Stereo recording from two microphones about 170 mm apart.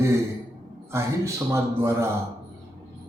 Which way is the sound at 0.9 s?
15° right (ahead or behind).